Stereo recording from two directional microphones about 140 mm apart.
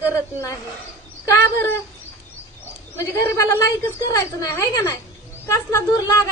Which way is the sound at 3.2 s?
20° left (ahead or behind).